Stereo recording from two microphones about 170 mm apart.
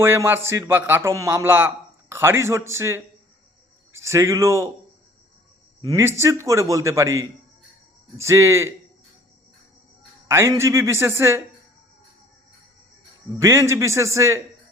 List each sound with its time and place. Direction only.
0.0 s a man's voice: 15° right (ahead or behind)
5.8 s a man's voice: 20° right (ahead or behind)
10.2 s a man's voice: 15° right (ahead or behind)
13.4 s a man's voice: 15° right (ahead or behind)